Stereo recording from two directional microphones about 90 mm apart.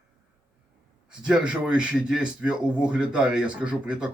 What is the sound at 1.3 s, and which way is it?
Speech, 10° right (ahead or behind).